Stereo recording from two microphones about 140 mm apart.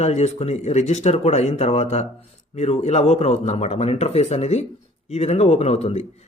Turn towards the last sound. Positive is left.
turn(degrees=50)  # may be behind; listen again after turning